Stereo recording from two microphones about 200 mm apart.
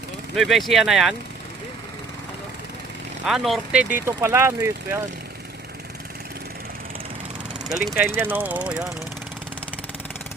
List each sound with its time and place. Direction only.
0.3 s speech: centre (ahead or behind)
3.2 s speech: centre (ahead or behind)
7.9 s speech: 10° right (ahead or behind)